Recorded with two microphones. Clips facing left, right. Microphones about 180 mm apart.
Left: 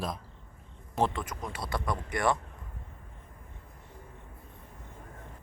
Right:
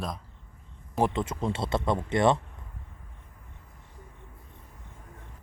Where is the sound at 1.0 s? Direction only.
20° right (ahead or behind).